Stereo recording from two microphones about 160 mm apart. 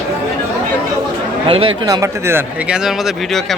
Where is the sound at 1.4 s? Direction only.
35° right (ahead or behind).